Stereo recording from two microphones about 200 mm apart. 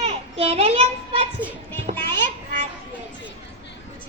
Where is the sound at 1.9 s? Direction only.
35° right (ahead or behind).